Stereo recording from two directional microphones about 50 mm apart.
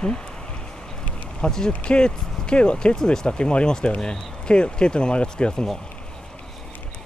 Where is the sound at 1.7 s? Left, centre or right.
Left.